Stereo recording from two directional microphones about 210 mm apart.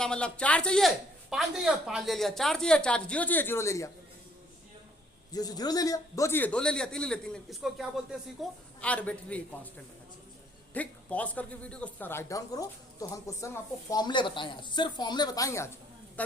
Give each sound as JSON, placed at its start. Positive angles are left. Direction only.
{"t": 0.0, "sound": "speech", "side_deg": 5}
{"t": 5.3, "sound": "speech", "side_deg": 20}
{"t": 10.8, "sound": "speech", "side_deg": 5}